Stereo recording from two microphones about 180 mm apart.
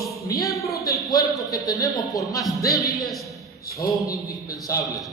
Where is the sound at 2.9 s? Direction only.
Centre (ahead or behind).